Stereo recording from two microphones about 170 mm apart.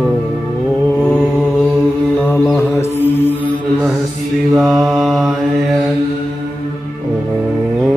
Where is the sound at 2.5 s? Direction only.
15° left (ahead or behind).